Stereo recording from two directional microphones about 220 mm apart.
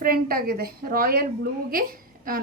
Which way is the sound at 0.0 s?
40° right (ahead or behind).